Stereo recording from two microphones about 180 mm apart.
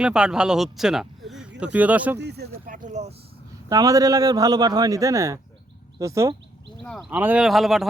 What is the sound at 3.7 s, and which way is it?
A man's voice, 20° right (ahead or behind).